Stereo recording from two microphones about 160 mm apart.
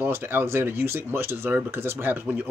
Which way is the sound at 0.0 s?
15° right (ahead or behind).